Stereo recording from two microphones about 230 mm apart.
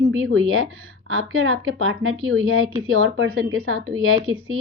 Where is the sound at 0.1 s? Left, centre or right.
Right.